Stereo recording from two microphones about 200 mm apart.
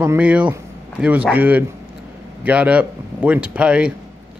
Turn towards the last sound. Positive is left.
turn(degrees=-5)  # may be behind; listen again after turning